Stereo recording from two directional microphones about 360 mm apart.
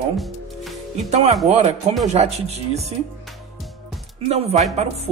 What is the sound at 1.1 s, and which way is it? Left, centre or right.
Speech, centre.